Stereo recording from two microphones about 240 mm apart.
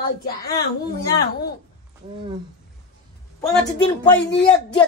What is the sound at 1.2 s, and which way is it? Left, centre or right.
Speech, left.